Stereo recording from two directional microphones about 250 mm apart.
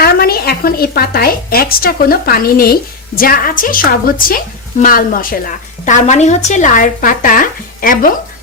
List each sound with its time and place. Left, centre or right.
0.0 s a woman's voice: left